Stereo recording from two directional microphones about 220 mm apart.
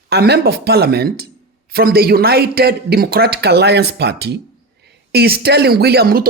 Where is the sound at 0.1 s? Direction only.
45° right (ahead or behind).